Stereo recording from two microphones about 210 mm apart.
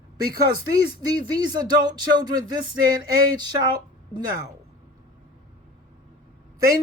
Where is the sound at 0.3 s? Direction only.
15° right (ahead or behind).